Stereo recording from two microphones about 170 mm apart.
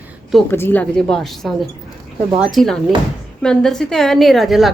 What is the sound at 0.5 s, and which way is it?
A woman's voice, 10° left (ahead or behind).